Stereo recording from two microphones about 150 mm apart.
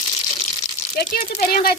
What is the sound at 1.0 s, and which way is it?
Speech, 90° left.